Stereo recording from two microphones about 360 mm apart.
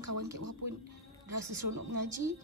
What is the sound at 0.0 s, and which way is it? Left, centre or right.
A woman's voice, right.